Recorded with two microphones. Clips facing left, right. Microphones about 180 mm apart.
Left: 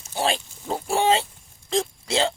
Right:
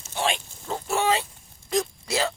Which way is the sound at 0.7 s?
30° left (ahead or behind).